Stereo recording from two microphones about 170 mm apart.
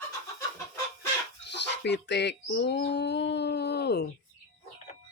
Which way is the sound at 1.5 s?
90° left.